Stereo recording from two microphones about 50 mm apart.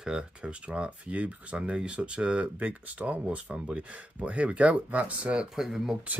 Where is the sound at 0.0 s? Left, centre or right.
Centre.